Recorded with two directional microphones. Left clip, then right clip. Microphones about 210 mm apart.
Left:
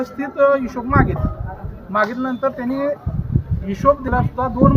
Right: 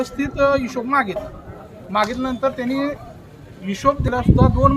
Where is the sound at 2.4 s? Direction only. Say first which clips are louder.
Left 1 dB; 5° right (ahead or behind).